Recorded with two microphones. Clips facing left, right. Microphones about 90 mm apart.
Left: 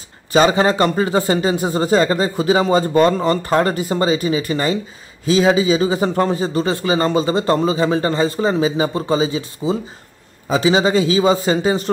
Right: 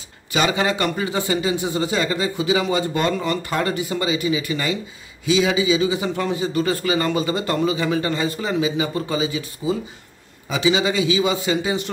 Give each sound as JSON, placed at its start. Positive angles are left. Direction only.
{"t": 0.3, "sound": "a man's voice", "side_deg": 35}